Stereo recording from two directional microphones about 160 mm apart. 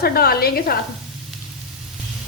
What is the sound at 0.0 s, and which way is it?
Speech, 70° left (ahead or behind).